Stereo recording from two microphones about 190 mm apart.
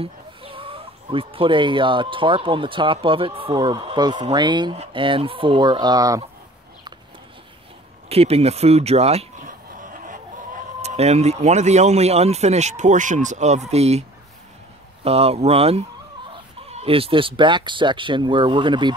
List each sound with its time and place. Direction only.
0.0 s speech: 30° right (ahead or behind)
8.1 s speech: 30° right (ahead or behind)
15.0 s speech: 30° right (ahead or behind)